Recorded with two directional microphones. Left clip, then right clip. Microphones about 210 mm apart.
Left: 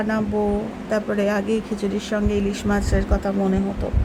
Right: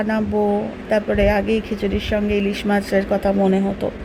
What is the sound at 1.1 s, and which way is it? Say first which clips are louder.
Speech: right 4 dB; 5° right (ahead or behind).